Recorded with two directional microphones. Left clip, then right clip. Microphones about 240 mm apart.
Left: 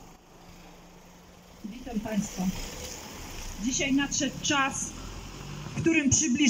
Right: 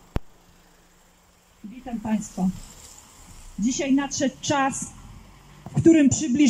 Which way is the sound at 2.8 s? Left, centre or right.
Left.